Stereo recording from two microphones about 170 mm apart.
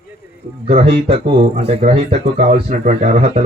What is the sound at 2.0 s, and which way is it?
Speech, 45° right (ahead or behind).